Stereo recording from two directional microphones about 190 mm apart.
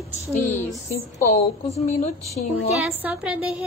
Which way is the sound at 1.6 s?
35° left (ahead or behind).